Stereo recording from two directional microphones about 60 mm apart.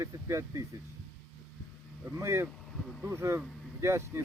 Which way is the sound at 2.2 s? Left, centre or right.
Right.